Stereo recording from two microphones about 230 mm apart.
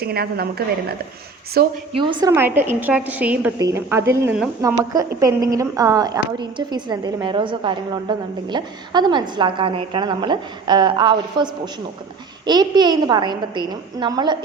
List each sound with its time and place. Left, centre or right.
0.0 s a woman's voice: right
1.9 s a woman's voice: right
2.3 s a woman's voice: centre